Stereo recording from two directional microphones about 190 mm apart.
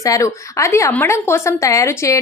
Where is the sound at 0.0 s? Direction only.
15° left (ahead or behind).